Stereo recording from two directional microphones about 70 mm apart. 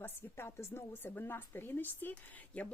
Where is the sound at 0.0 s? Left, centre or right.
Left.